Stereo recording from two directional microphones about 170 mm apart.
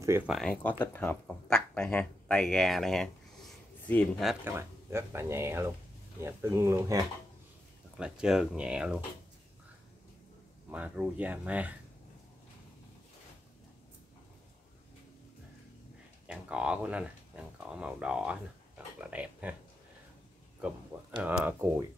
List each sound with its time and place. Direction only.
0.3 s speech: centre (ahead or behind)
4.5 s speech: 15° right (ahead or behind)
8.0 s speech: 5° right (ahead or behind)
10.7 s speech: 10° right (ahead or behind)
16.3 s speech: 5° right (ahead or behind)
21.2 s speech: 10° right (ahead or behind)